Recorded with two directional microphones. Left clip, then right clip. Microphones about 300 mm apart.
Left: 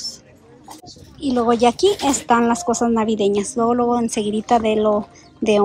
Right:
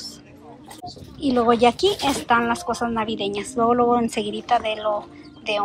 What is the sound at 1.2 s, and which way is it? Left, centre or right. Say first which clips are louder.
A woman's voice: left 1 dB; centre.